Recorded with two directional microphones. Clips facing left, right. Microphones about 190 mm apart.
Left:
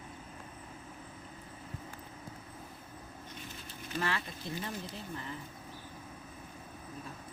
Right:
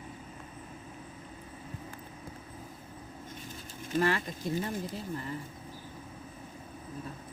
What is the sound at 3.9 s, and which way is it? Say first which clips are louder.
Speech: right 7 dB; 45° right (ahead or behind).